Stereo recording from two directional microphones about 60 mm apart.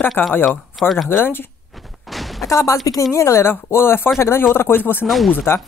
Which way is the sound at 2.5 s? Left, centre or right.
Left.